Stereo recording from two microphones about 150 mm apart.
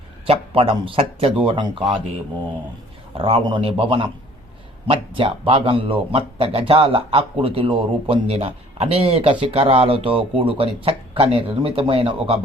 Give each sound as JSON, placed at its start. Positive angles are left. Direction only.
{"t": 0.3, "sound": "speech", "side_deg": -40}
{"t": 3.2, "sound": "speech", "side_deg": -35}